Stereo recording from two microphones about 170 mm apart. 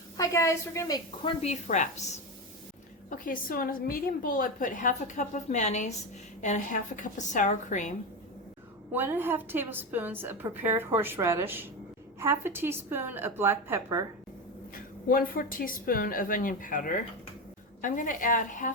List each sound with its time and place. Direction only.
0.2 s a woman's voice: 20° left (ahead or behind)
1.4 s a woman's voice: 45° left (ahead or behind)
3.1 s a woman's voice: 55° left (ahead or behind)
8.9 s a woman's voice: 10° right (ahead or behind)
15.0 s a woman's voice: 55° left (ahead or behind)